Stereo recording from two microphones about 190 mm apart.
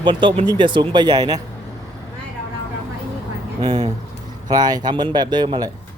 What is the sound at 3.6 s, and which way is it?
Speech, 25° right (ahead or behind).